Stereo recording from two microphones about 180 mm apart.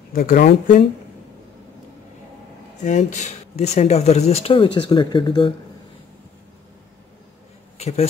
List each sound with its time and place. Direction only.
0.1 s speech: 55° left (ahead or behind)
2.8 s speech: 40° left (ahead or behind); by 5.5 s 25° left (ahead or behind)
7.7 s speech: 35° left (ahead or behind)